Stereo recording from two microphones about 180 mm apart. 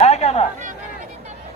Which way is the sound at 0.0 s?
35° left (ahead or behind).